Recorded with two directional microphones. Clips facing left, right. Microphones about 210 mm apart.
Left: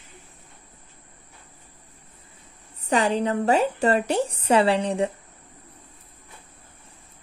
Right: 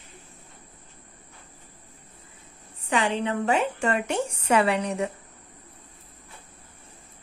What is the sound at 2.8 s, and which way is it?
A woman's voice, 40° left (ahead or behind).